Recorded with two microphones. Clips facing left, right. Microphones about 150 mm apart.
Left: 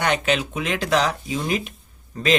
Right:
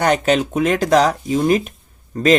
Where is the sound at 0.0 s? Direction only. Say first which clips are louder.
Right 6 dB; 40° right (ahead or behind).